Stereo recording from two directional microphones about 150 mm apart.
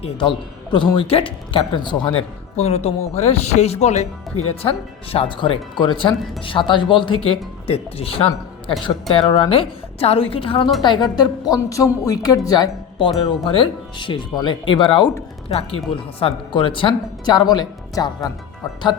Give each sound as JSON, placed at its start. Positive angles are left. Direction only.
{"t": 0.0, "sound": "speech", "side_deg": 35}
{"t": 2.6, "sound": "speech", "side_deg": 45}
{"t": 11.1, "sound": "speech", "side_deg": 25}
{"t": 15.4, "sound": "speech", "side_deg": 40}